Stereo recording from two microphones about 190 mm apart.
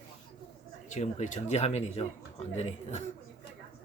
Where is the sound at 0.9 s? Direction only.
40° left (ahead or behind).